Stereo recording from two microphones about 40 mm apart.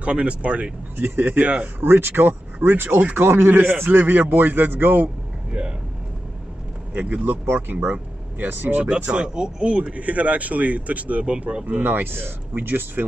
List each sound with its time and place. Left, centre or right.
0.0 s speech: right
0.9 s speech: right
1.4 s speech: right
1.8 s speech: right
6.9 s speech: right
7.4 s speech: right
7.9 s speech: right
9.1 s speech: right
11.3 s speech: right
11.6 s speech: right